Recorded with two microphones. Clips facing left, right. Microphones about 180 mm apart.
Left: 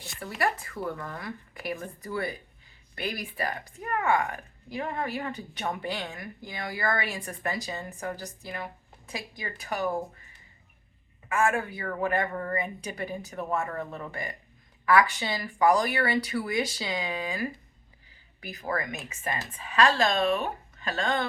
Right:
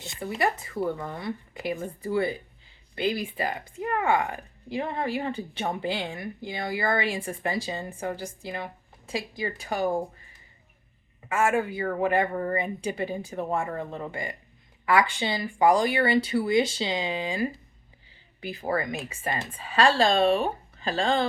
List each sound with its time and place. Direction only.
0.0 s a woman's voice: 25° right (ahead or behind)
11.3 s a woman's voice: 25° right (ahead or behind)